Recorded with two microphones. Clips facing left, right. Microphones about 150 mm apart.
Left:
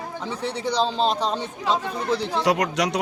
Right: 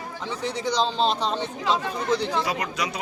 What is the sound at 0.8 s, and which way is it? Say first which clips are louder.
Speech: left 2 dB; 5° left (ahead or behind).